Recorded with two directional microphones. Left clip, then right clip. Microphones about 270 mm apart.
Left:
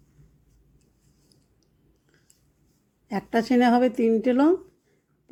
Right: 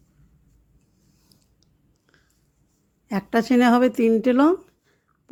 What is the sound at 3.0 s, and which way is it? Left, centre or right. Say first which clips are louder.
Speech: right 2 dB; centre.